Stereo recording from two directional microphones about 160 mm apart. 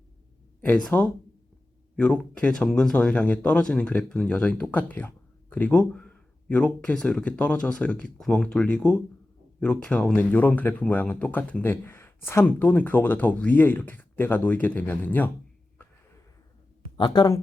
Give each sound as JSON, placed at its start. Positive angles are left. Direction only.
{"t": 0.6, "sound": "speech", "side_deg": 5}
{"t": 17.0, "sound": "speech", "side_deg": 25}